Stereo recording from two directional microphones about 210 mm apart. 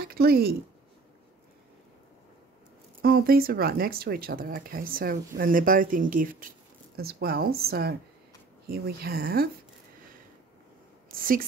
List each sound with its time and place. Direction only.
0.0 s speech: 45° right (ahead or behind)
3.0 s speech: 45° right (ahead or behind)
11.1 s a woman's voice: 40° right (ahead or behind)